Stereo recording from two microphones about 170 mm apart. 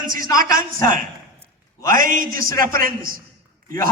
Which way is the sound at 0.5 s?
50° right (ahead or behind).